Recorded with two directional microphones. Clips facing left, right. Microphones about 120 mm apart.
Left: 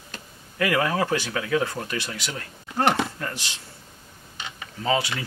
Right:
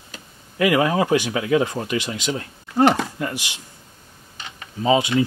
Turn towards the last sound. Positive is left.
turn(degrees=-20)  # may be behind; listen again after turning